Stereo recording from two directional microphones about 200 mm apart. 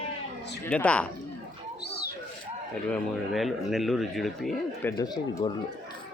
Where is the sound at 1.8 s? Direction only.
55° left (ahead or behind).